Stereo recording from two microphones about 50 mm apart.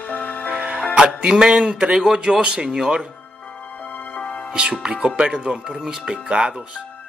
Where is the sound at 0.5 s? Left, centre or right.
Right.